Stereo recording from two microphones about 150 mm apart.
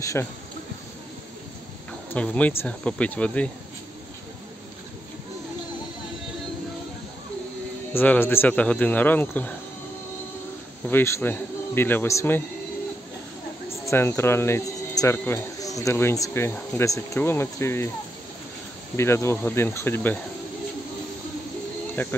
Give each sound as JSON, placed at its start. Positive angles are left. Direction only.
{"t": 0.0, "sound": "speech", "side_deg": 20}
{"t": 2.0, "sound": "speech", "side_deg": 10}
{"t": 7.9, "sound": "speech", "side_deg": 15}
{"t": 10.9, "sound": "speech", "side_deg": 15}
{"t": 13.8, "sound": "speech", "side_deg": 15}
{"t": 18.9, "sound": "speech", "side_deg": 15}
{"t": 22.0, "sound": "speech", "side_deg": 15}